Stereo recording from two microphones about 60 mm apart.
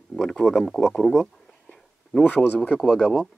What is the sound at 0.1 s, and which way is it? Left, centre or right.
Speech, centre.